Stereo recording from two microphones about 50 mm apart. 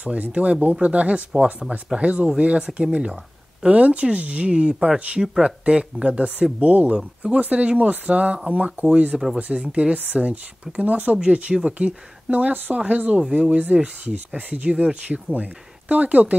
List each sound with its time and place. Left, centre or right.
0.0 s speech: right
9.1 s speech: centre
9.7 s speech: right